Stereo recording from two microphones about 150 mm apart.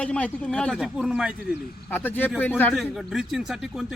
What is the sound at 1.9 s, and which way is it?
Speech, 10° left (ahead or behind).